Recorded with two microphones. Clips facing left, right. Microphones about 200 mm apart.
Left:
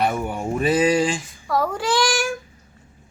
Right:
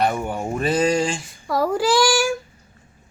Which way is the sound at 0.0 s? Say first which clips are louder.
Right 1 dB; 5° left (ahead or behind).